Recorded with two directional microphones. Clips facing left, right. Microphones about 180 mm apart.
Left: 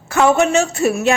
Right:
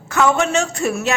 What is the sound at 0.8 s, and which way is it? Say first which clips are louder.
Speech: left 4 dB; 15° left (ahead or behind).